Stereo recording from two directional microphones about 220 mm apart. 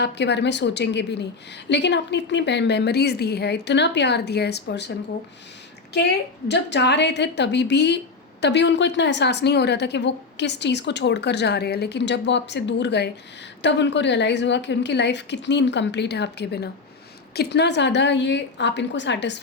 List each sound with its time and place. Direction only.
0.0 s a woman's voice: 50° left (ahead or behind)
6.5 s a woman's voice: 50° left (ahead or behind)